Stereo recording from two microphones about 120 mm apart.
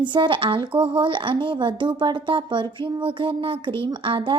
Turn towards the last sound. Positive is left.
turn(degrees=-45)  # may be behind; listen again after turning